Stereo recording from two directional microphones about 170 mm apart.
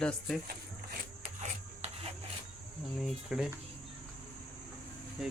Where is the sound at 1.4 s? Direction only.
40° right (ahead or behind).